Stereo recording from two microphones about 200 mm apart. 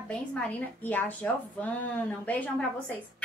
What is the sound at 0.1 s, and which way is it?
A woman's voice, 5° left (ahead or behind).